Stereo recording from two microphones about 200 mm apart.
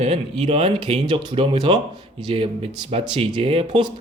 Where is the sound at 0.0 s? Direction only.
30° right (ahead or behind).